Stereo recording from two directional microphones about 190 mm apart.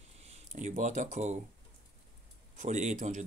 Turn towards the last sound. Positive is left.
turn(degrees=-40)  # may be behind; listen again after turning